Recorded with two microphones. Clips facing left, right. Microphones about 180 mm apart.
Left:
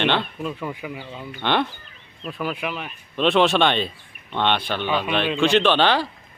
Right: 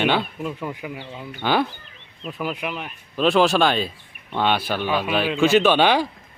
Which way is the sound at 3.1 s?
Centre (ahead or behind).